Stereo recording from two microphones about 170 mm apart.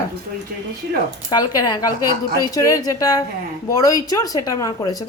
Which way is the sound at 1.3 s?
25° left (ahead or behind).